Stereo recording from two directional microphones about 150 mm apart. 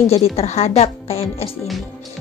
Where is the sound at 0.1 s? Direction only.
45° left (ahead or behind).